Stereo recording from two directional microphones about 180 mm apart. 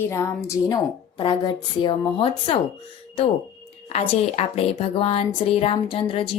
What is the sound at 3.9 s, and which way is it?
Speech, 35° left (ahead or behind).